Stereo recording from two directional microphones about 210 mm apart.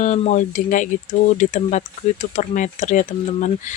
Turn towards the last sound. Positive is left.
turn(degrees=35)  # may be behind; listen again after turning